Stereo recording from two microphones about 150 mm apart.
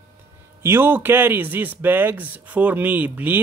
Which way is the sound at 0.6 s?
15° right (ahead or behind).